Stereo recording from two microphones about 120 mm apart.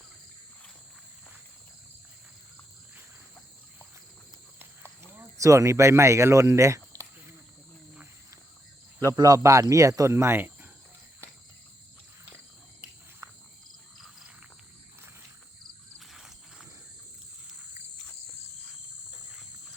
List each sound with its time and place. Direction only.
5.1 s speech: 25° right (ahead or behind)
9.0 s speech: 30° right (ahead or behind)
14.0 s frog: 5° right (ahead or behind)
16.0 s cricket: 5° right (ahead or behind)